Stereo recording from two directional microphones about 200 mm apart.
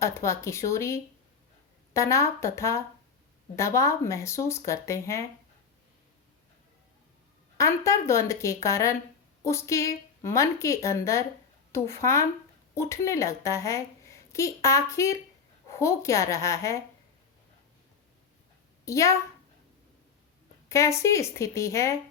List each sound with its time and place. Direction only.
0.0 s a woman's voice: 15° left (ahead or behind)
7.6 s a woman's voice: 15° left (ahead or behind)
18.9 s a woman's voice: 15° left (ahead or behind)
20.7 s a woman's voice: 15° left (ahead or behind)